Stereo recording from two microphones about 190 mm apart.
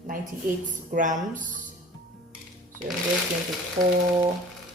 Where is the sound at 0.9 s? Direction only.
40° right (ahead or behind).